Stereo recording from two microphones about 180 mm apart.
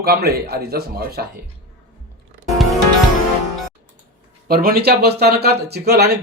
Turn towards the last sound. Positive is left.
turn(degrees=-60)  # may be behind; listen again after turning